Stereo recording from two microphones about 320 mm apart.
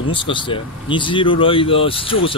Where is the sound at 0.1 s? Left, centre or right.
Centre.